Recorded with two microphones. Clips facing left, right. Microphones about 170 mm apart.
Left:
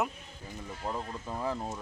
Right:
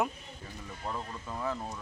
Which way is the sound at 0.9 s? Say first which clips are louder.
Left 1 dB; 25° left (ahead or behind).